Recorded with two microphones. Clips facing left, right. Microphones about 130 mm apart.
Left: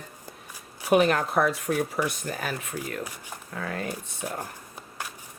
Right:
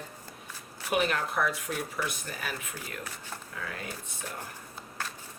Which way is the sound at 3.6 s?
45° left (ahead or behind).